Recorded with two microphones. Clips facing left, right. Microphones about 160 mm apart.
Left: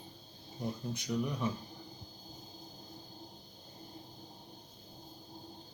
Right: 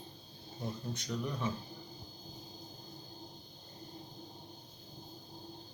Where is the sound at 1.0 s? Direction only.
10° left (ahead or behind).